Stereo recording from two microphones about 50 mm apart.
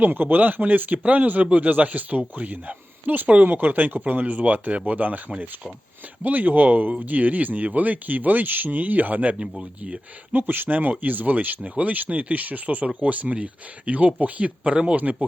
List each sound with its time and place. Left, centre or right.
0.0 s speech: right
6.2 s speech: right
10.3 s speech: right